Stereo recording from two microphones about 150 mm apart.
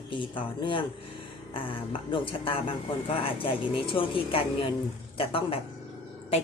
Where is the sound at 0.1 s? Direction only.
35° left (ahead or behind).